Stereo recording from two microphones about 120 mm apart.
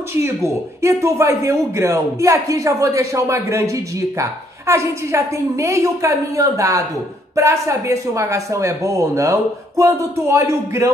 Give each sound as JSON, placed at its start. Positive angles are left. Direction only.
{"t": 0.1, "sound": "a man's voice", "side_deg": -25}